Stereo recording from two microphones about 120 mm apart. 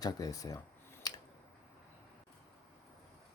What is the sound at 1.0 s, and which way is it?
Squish, 35° left (ahead or behind).